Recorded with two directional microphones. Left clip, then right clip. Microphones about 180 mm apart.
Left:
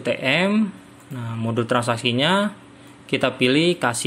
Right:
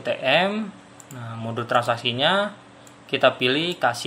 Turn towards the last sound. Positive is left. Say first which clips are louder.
# left 3 dB
turn(degrees=35)  # may be behind; listen again after turning